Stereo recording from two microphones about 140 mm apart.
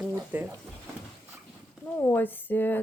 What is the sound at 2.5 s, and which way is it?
Speech, 15° left (ahead or behind).